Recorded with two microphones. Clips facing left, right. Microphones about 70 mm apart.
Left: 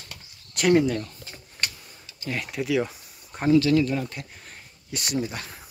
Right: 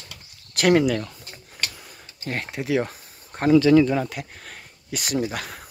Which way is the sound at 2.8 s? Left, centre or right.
Right.